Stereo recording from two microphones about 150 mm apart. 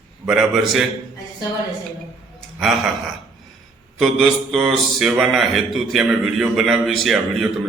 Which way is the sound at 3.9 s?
Centre (ahead or behind).